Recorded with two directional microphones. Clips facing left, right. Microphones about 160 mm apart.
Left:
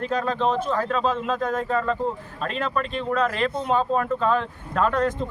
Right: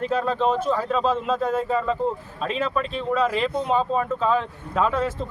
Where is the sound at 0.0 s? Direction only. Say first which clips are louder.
Right 1 dB; 5° right (ahead or behind).